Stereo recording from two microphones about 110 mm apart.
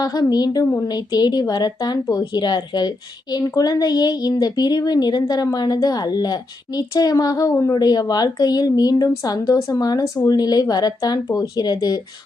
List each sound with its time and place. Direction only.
0.0 s a woman's voice: 35° left (ahead or behind)